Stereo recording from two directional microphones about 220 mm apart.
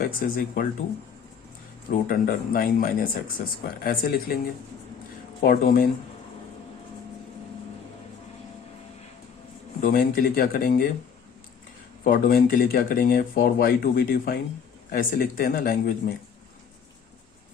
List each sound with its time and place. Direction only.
0.0 s speech: 40° left (ahead or behind)
1.9 s speech: 40° left (ahead or behind)
5.4 s speech: 40° left (ahead or behind)
9.8 s speech: 40° left (ahead or behind)
12.0 s speech: 40° left (ahead or behind)